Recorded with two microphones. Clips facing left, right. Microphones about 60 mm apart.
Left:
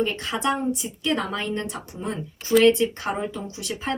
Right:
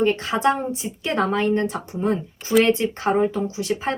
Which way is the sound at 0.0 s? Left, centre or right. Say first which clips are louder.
Right 5 dB; right.